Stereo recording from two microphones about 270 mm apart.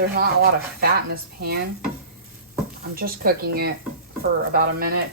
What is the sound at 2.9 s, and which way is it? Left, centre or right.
Speech, right.